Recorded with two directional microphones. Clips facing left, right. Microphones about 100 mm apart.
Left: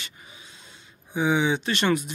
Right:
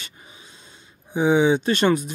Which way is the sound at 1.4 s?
40° right (ahead or behind).